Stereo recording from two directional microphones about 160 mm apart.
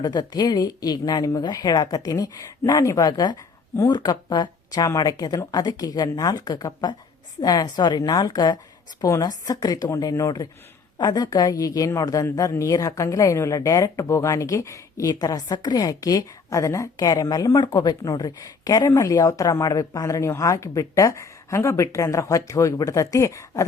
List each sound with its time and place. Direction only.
0.0 s a woman's voice: 25° left (ahead or behind)